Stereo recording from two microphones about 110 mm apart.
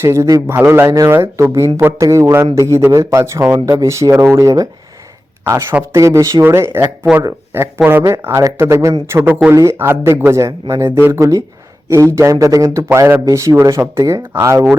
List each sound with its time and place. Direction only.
0.0 s speech: 25° right (ahead or behind)
5.9 s speech: 25° right (ahead or behind)
7.9 s speech: 25° right (ahead or behind)